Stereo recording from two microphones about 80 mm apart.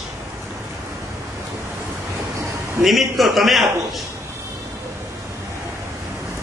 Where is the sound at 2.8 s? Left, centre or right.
Centre.